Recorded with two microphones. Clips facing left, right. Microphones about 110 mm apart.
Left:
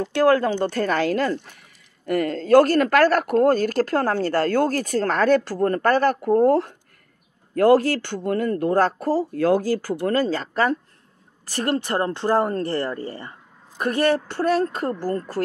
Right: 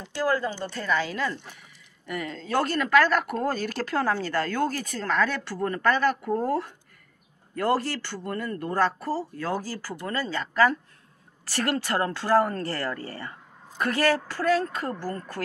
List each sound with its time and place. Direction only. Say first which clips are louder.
0.0 s speech: left 8 dB; 60° left (ahead or behind)
8.2 s speech: left 10 dB; 65° left (ahead or behind)
8.7 s speech: left 3 dB; 50° left (ahead or behind); by 10.8 s 35° left (ahead or behind)
11.5 s speech: left 3 dB; 20° left (ahead or behind)